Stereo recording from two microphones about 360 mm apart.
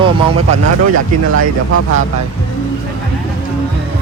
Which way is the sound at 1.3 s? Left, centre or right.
Right.